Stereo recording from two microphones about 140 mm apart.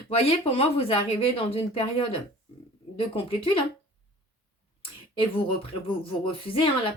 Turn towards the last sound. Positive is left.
turn(degrees=40)  # may be behind; listen again after turning